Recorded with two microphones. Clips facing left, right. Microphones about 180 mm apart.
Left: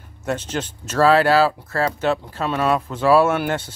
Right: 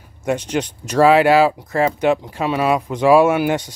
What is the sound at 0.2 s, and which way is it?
Speech, 15° right (ahead or behind).